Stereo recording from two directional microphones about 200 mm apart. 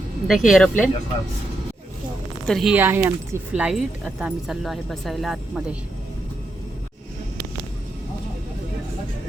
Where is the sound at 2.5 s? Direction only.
Centre (ahead or behind).